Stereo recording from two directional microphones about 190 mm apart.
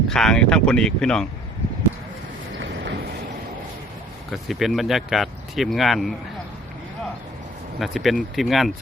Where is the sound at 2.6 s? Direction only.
70° right (ahead or behind).